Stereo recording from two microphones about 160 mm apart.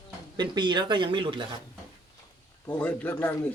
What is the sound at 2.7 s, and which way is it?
Speech, 10° left (ahead or behind).